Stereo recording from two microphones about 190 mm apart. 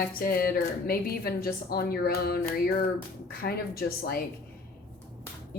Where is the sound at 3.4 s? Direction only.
55° left (ahead or behind).